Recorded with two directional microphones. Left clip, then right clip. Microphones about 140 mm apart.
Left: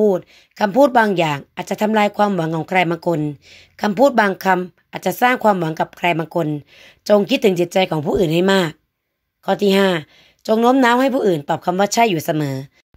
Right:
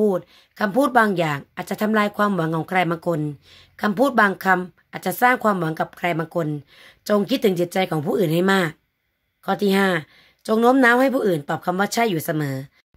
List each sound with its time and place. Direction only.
0.0 s speech: 15° left (ahead or behind)